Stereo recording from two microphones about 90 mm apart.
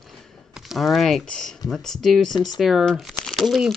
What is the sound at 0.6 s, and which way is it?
Speech, centre (ahead or behind).